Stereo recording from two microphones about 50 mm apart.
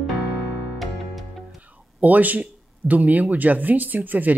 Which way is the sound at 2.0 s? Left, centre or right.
Right.